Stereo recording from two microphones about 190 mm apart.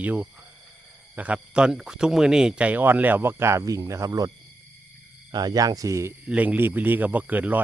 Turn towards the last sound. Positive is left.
turn(degrees=-10)  # may be behind; listen again after turning